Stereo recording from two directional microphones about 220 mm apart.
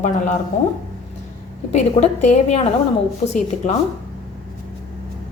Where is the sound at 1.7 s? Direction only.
30° left (ahead or behind).